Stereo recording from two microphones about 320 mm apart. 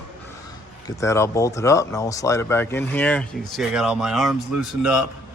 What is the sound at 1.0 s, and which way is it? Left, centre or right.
Speech, centre.